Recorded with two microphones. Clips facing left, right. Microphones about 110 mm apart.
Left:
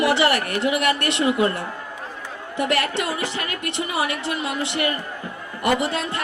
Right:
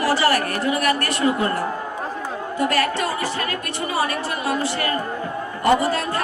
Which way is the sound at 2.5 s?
20° left (ahead or behind).